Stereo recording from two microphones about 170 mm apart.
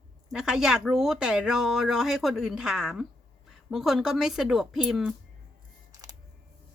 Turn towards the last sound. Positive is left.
turn(degrees=-20)  # may be behind; listen again after turning